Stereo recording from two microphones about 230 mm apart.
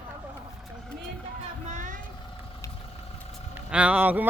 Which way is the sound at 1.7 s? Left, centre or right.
Right.